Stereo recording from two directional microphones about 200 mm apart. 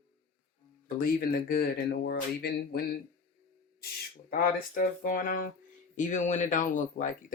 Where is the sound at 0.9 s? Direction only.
45° left (ahead or behind).